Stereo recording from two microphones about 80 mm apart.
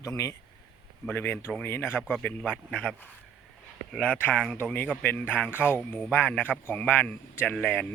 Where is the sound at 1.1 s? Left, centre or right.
Left.